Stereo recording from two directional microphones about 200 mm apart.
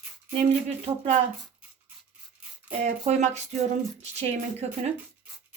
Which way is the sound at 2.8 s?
35° right (ahead or behind).